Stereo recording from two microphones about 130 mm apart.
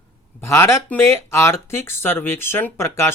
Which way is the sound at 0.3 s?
20° left (ahead or behind).